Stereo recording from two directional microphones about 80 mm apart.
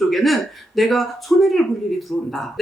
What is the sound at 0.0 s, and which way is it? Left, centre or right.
Speech, centre.